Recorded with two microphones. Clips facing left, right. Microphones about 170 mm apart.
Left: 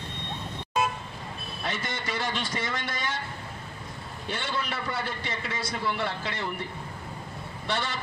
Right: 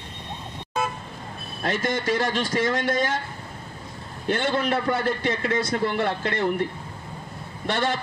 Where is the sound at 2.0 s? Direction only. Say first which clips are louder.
Right 7 dB; 90° right.